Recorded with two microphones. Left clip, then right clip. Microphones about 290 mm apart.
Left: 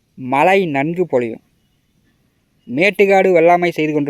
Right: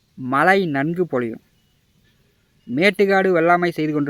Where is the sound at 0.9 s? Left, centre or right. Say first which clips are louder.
Left 5 dB; left.